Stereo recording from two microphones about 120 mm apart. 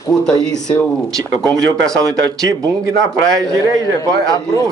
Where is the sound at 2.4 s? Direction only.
30° right (ahead or behind).